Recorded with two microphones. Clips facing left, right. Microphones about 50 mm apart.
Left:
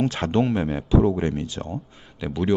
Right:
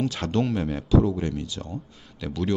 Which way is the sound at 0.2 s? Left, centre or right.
Left.